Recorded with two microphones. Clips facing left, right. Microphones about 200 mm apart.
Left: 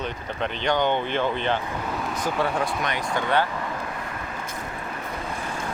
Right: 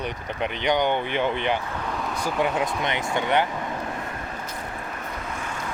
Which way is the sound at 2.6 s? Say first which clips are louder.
Right 1 dB; 20° right (ahead or behind).